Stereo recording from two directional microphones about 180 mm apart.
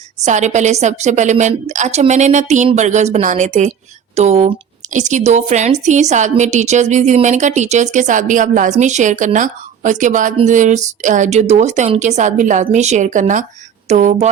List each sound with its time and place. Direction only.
0.3 s a woman's voice: 40° right (ahead or behind)